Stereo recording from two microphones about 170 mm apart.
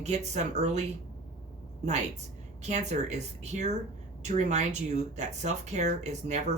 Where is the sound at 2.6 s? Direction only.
45° right (ahead or behind).